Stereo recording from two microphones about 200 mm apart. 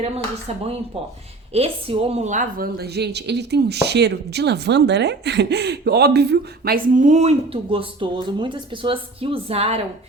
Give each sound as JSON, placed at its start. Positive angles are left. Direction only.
{"t": 0.0, "sound": "a woman's voice", "side_deg": -30}